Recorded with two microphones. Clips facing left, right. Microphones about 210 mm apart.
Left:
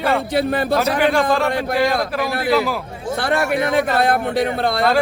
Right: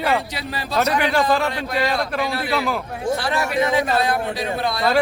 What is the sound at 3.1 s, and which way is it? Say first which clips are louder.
Speech: left 4 dB; 55° left (ahead or behind).